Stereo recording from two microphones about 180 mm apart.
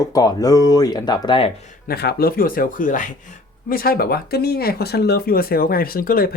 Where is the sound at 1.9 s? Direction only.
60° left (ahead or behind).